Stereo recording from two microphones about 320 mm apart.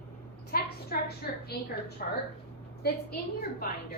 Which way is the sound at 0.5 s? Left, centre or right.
Left.